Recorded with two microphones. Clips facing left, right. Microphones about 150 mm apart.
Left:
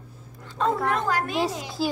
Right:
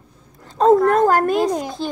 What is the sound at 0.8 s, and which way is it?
Speech, 45° right (ahead or behind).